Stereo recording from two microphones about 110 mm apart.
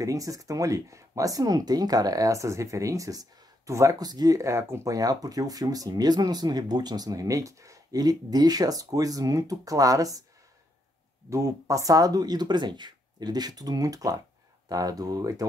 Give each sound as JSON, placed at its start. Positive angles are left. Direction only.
{"t": 0.0, "sound": "speech", "side_deg": -30}
{"t": 11.2, "sound": "speech", "side_deg": -25}